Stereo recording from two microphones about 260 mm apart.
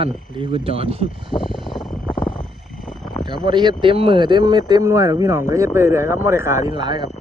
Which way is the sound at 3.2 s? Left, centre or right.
Centre.